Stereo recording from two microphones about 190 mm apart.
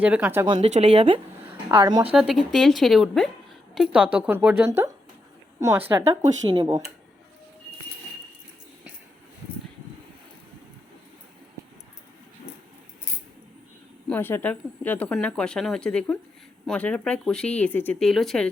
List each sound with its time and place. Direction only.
0.0 s speech: 10° right (ahead or behind)
0.4 s a woman's voice: 25° right (ahead or behind)
0.7 s a woman's voice: 35° right (ahead or behind)
2.1 s speech: centre (ahead or behind); by 6.8 s 25° right (ahead or behind)
14.1 s speech: 10° left (ahead or behind)